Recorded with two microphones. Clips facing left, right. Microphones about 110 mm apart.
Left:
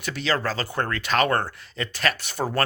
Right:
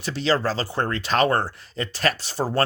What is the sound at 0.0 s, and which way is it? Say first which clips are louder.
Speech: right 3 dB; 35° right (ahead or behind).